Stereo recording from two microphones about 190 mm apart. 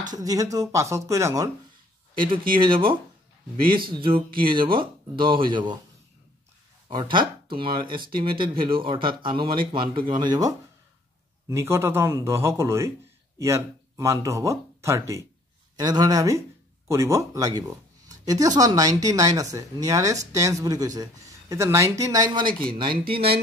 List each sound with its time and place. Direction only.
0.0 s speech: 20° right (ahead or behind)
2.5 s speech: 25° right (ahead or behind)
3.9 s speech: 25° right (ahead or behind)
6.9 s speech: 25° right (ahead or behind)